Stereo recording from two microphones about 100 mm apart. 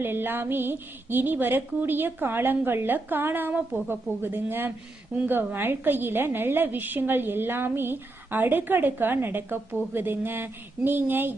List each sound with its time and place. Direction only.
0.0 s a woman's voice: 20° right (ahead or behind)